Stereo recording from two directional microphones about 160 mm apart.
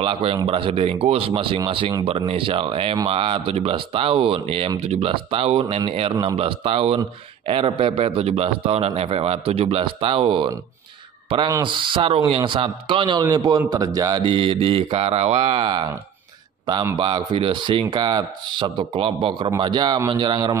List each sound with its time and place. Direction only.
0.0 s speech: 35° right (ahead or behind)
16.9 s a man's voice: 30° right (ahead or behind)